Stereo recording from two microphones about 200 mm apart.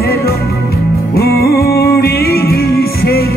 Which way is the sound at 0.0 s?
50° left (ahead or behind).